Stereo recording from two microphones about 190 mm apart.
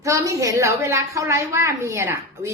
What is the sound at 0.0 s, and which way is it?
A woman's voice, 15° right (ahead or behind).